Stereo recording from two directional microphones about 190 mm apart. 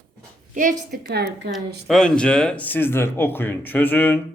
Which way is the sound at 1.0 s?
60° right (ahead or behind).